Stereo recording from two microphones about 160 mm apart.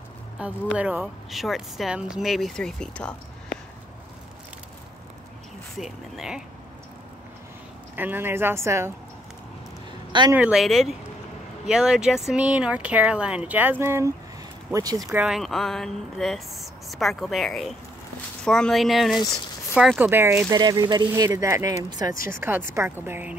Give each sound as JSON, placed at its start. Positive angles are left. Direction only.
{"t": 0.4, "sound": "speech", "side_deg": -10}
{"t": 5.8, "sound": "speech", "side_deg": 0}
{"t": 7.9, "sound": "speech", "side_deg": -10}
{"t": 10.3, "sound": "speech", "side_deg": -5}
{"t": 15.1, "sound": "speech", "side_deg": -5}
{"t": 19.1, "sound": "speech", "side_deg": 20}
{"t": 20.0, "sound": "speech", "side_deg": -15}
{"t": 20.4, "sound": "speech", "side_deg": -25}